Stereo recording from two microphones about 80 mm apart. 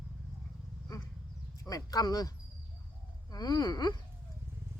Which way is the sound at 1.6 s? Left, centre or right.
Left.